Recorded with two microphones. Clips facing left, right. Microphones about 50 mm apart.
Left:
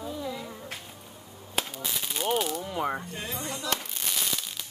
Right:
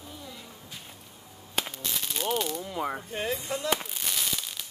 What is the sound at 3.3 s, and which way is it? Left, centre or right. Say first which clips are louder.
Speech: right 2 dB; left.